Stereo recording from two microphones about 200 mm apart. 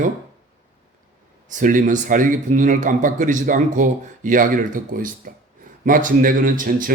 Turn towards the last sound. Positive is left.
turn(degrees=-45)  # may be behind; listen again after turning